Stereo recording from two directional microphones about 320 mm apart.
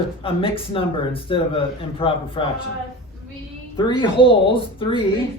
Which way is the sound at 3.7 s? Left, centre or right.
Centre.